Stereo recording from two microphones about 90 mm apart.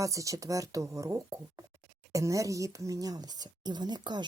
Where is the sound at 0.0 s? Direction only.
40° right (ahead or behind).